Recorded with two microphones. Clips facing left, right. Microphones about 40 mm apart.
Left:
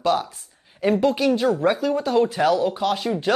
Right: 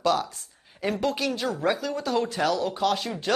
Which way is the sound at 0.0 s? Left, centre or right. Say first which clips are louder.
Left 3 dB; centre.